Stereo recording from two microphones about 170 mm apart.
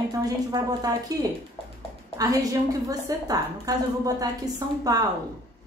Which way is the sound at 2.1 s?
20° right (ahead or behind).